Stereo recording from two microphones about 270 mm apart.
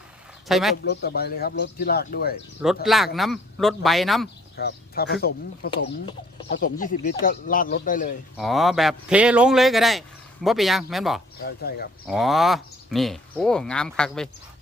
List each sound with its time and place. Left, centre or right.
0.4 s speech: centre
0.9 s speech: left
2.8 s speech: centre
4.5 s speech: left
8.4 s speech: centre
11.4 s speech: left
12.0 s speech: centre